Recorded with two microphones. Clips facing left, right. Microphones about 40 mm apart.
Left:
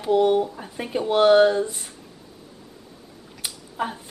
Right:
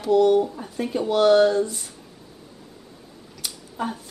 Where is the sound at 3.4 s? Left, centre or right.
Left.